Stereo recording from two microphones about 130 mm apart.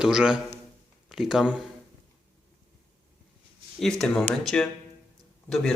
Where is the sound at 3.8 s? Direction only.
5° left (ahead or behind).